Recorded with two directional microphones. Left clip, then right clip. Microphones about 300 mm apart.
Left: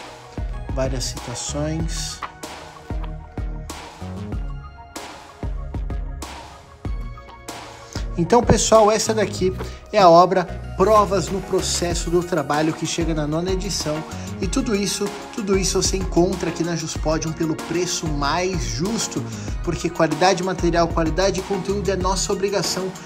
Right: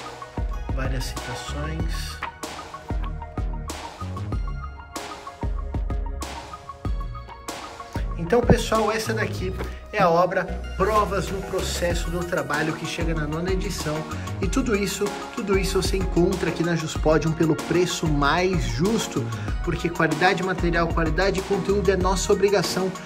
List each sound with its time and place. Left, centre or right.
0.7 s speech: centre
7.9 s speech: centre